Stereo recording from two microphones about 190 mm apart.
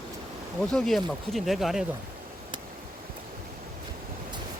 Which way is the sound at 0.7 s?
Centre (ahead or behind).